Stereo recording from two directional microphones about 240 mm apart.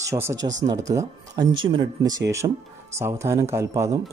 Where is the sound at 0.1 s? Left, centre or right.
Centre.